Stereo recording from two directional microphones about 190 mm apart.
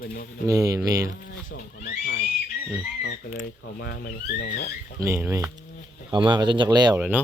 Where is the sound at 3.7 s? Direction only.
60° left (ahead or behind).